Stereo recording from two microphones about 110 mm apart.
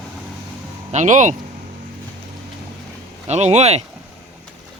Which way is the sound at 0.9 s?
90° right.